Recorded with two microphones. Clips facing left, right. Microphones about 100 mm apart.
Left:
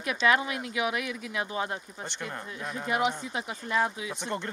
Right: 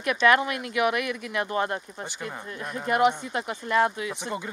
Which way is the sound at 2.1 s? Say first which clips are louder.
Even; 5° right (ahead or behind).